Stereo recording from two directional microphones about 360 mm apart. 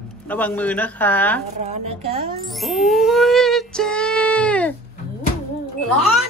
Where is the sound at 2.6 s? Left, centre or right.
Centre.